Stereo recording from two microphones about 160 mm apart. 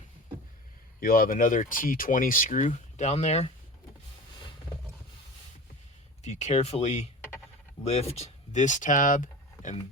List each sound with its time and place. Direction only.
0.9 s speech: 65° left (ahead or behind); by 3.5 s 40° left (ahead or behind)
6.2 s speech: 45° left (ahead or behind)